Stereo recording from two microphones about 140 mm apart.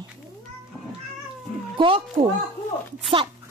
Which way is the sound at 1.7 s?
40° right (ahead or behind).